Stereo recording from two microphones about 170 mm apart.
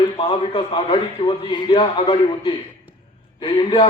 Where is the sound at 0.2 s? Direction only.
25° left (ahead or behind).